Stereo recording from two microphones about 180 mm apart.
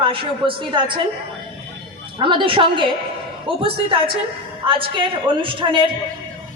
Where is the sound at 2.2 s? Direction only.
25° right (ahead or behind).